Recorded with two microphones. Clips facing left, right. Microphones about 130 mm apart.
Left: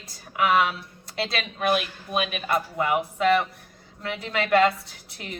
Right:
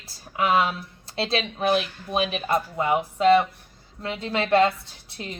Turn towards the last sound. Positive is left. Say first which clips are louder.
# right 3 dB
turn(degrees=-25)  # may be behind; listen again after turning